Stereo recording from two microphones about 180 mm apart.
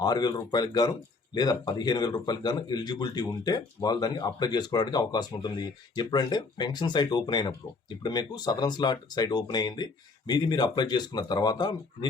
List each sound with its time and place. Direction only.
0.0 s speech: 20° left (ahead or behind)